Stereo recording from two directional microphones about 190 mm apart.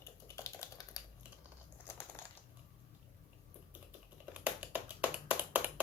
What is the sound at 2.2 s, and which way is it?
Typing, 10° left (ahead or behind).